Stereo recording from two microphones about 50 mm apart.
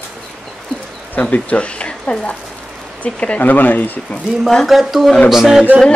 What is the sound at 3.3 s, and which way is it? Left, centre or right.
Speech, left.